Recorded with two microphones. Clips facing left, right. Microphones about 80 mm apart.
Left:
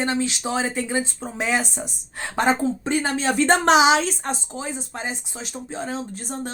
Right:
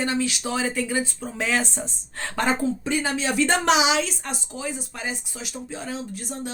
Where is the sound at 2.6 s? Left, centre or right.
Left.